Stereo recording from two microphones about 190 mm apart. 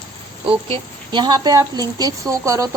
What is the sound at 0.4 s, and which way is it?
A woman's voice, 25° right (ahead or behind).